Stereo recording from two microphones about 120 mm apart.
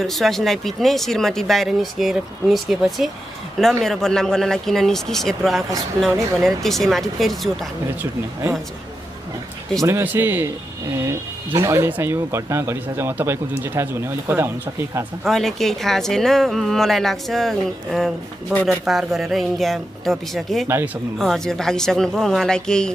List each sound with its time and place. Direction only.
0.0 s speech: centre (ahead or behind)
8.0 s speech: 25° right (ahead or behind)
9.8 s speech: 20° right (ahead or behind)
15.2 s speech: centre (ahead or behind)
18.9 s speech: centre (ahead or behind)
20.6 s speech: 20° right (ahead or behind)
21.2 s speech: 5° left (ahead or behind)